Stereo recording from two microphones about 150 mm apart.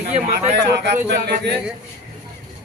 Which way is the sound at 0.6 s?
90° right.